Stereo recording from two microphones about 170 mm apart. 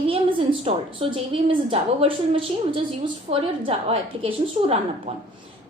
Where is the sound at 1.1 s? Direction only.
30° right (ahead or behind).